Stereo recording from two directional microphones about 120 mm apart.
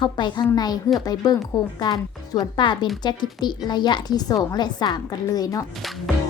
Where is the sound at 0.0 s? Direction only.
40° left (ahead or behind).